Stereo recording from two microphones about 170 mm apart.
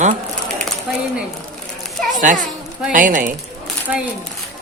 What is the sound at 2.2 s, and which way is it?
A man's voice, 50° right (ahead or behind).